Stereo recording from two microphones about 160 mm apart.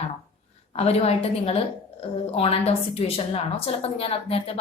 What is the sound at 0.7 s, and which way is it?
A woman's voice, 40° left (ahead or behind).